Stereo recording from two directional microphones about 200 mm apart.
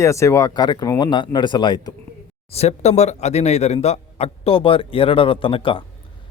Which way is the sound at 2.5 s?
35° left (ahead or behind).